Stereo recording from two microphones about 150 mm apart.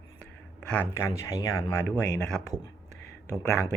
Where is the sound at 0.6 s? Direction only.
5° left (ahead or behind).